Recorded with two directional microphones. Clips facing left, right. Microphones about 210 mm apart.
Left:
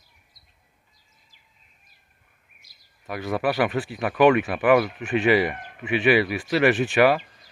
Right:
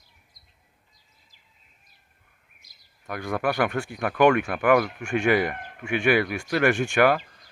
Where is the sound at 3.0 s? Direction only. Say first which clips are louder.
Left 2 dB; 5° left (ahead or behind).